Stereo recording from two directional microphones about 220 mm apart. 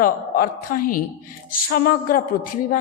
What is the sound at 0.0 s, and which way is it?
Speech, 40° left (ahead or behind).